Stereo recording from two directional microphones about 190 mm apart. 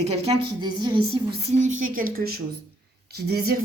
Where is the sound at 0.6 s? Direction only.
25° right (ahead or behind).